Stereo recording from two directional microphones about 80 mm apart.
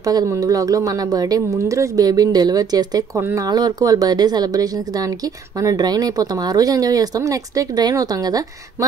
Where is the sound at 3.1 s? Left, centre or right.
Right.